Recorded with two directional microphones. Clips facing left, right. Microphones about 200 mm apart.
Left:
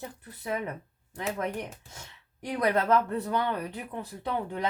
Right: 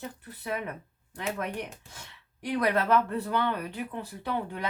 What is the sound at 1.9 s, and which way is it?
A woman's voice, 20° left (ahead or behind).